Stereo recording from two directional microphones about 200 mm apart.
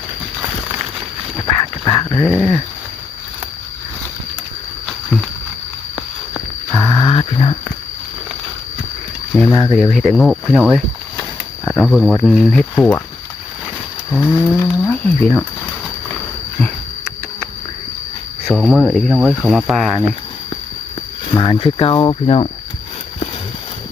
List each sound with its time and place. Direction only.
1.8 s dog: 25° left (ahead or behind)
2.2 s speech: centre (ahead or behind)
4.9 s a sound: centre (ahead or behind)
6.7 s a sound: 15° left (ahead or behind)
9.5 s speech: 25° left (ahead or behind)
9.7 s speech: 5° left (ahead or behind)
11.8 s speech: centre (ahead or behind)
14.1 s speech: 5° left (ahead or behind)
18.5 s speech: centre (ahead or behind)
21.3 s speech: 25° left (ahead or behind)